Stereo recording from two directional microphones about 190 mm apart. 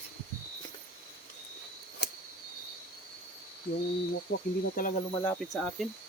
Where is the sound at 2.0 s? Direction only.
60° left (ahead or behind).